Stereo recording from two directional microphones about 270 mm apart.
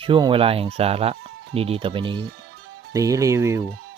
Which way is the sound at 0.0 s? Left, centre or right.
Centre.